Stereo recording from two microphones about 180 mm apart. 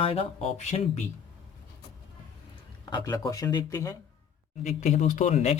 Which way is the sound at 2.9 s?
20° left (ahead or behind).